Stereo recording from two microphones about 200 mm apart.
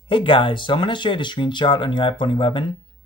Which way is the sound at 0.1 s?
25° left (ahead or behind).